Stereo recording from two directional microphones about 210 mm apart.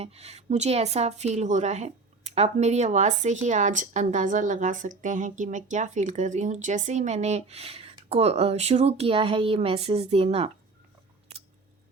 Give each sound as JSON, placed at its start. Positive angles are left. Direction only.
{"t": 0.0, "sound": "a woman's voice", "side_deg": -30}